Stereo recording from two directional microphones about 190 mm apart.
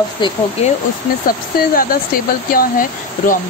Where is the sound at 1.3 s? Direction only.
50° left (ahead or behind).